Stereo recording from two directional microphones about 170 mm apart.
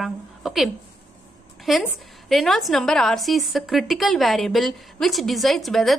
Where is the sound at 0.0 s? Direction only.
Centre (ahead or behind).